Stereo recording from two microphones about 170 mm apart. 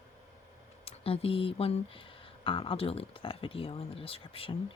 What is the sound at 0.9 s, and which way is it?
Speech, 35° left (ahead or behind).